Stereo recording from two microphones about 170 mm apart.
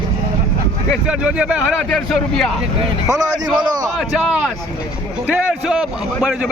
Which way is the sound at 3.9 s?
Centre (ahead or behind).